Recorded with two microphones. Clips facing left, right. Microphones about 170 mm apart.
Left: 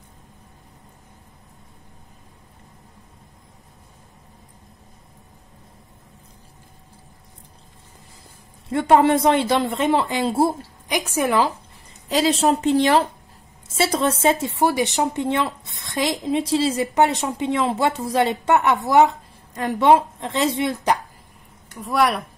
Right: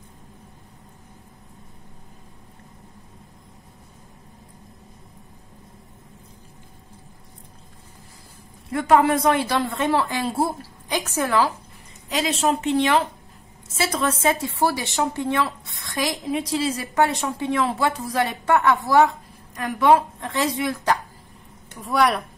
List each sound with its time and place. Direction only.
8.6 s speech: 25° left (ahead or behind)
10.9 s a woman's voice: 15° left (ahead or behind)
12.1 s a woman's voice: 35° left (ahead or behind)
21.8 s speech: centre (ahead or behind)